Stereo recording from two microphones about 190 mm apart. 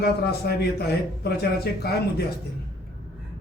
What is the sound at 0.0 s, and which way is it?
Speech, 55° left (ahead or behind).